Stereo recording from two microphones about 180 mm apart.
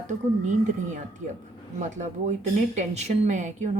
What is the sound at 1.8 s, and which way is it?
Speech, 40° right (ahead or behind).